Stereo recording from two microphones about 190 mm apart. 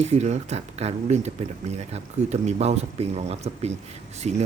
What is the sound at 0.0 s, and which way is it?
Speech, 35° right (ahead or behind).